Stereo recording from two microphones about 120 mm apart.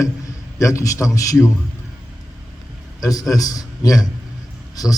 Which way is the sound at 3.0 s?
30° left (ahead or behind).